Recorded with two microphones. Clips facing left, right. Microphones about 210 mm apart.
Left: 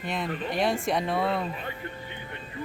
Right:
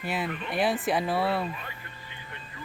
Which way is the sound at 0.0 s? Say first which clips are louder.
Left 1 dB; 5° right (ahead or behind).